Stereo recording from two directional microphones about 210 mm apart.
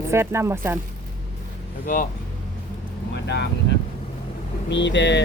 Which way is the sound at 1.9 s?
40° left (ahead or behind).